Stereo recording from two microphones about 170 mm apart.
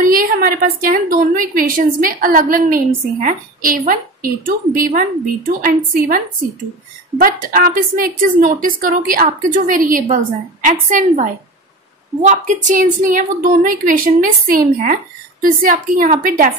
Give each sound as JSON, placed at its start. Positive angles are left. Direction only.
{"t": 0.0, "sound": "a woman's voice", "side_deg": -55}